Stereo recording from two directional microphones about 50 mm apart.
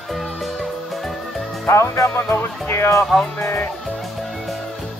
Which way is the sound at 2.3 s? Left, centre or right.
Left.